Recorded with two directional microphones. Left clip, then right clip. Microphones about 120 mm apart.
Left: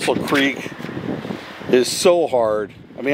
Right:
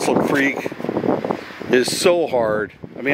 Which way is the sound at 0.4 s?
10° right (ahead or behind).